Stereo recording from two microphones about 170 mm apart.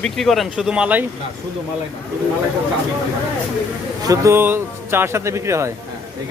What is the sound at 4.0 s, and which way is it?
Speech, 20° right (ahead or behind).